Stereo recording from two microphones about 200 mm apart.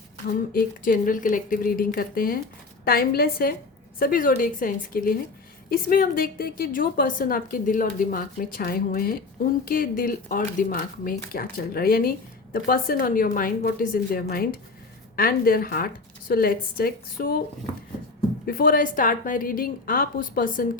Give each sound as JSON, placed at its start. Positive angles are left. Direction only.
{"t": 0.5, "sound": "a woman's voice", "side_deg": 45}
{"t": 18.4, "sound": "a woman's voice", "side_deg": 45}